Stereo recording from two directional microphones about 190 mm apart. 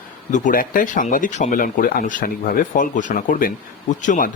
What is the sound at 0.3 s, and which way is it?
Speech, 40° left (ahead or behind).